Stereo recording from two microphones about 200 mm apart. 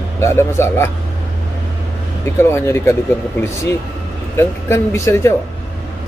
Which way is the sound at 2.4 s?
15° left (ahead or behind).